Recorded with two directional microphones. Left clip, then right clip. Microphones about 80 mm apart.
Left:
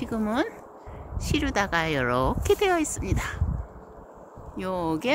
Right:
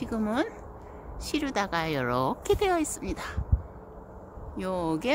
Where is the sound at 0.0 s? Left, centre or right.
Left.